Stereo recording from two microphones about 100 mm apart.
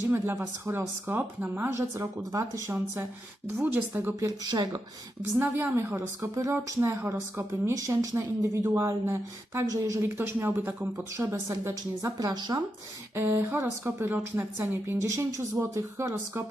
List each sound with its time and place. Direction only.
0.1 s a woman's voice: 25° right (ahead or behind)
2.0 s a woman's voice: 35° right (ahead or behind)
2.7 s a woman's voice: 20° right (ahead or behind)
4.3 s a woman's voice: 45° right (ahead or behind)
5.4 s a woman's voice: 20° right (ahead or behind)
11.3 s a woman's voice: 30° right (ahead or behind)
13.1 s a woman's voice: 25° right (ahead or behind)